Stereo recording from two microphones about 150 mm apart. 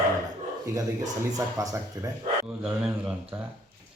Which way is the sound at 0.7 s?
20° right (ahead or behind).